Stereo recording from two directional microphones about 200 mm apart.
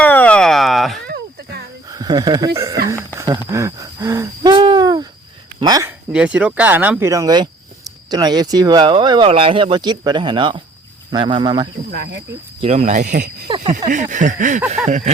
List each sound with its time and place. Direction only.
0.0 s a sound: 5° left (ahead or behind)
1.0 s a sound: 55° right (ahead or behind)
1.9 s speech: 20° right (ahead or behind)
3.2 s hoot: 15° right (ahead or behind)
5.5 s speech: 20° right (ahead or behind)
6.1 s speech: 5° right (ahead or behind); by 11.7 s 20° right (ahead or behind)
12.6 s speech: 35° right (ahead or behind)